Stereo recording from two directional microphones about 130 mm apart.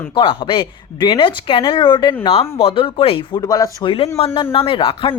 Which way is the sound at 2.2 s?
45° left (ahead or behind).